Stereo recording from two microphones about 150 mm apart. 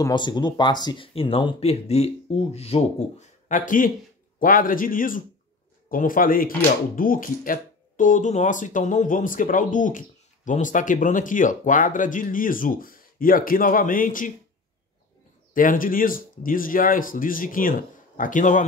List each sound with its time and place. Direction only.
0.0 s speech: 30° left (ahead or behind); by 7.5 s 70° left (ahead or behind)
8.0 s speech: 55° left (ahead or behind)
15.5 s speech: 65° left (ahead or behind)